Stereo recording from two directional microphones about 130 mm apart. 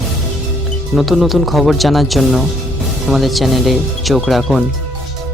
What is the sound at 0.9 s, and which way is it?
Speech, centre (ahead or behind).